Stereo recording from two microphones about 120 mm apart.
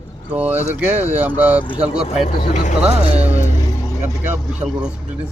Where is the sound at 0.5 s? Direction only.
65° right (ahead or behind).